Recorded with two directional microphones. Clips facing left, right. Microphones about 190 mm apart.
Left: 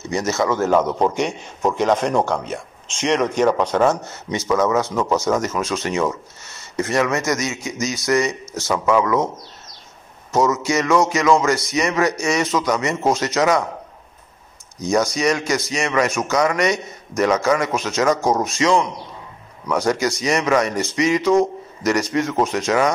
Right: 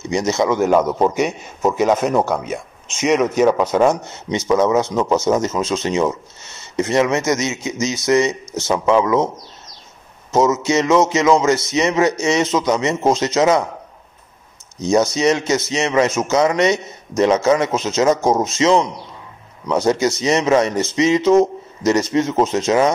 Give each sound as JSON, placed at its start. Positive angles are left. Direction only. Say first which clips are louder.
{"t": 0.1, "sound": "a man's voice", "louder": "right 3 dB", "side_deg": -15}
{"t": 10.3, "sound": "speech", "louder": "right 3 dB", "side_deg": -20}
{"t": 14.8, "sound": "speech", "louder": "right 3 dB", "side_deg": -25}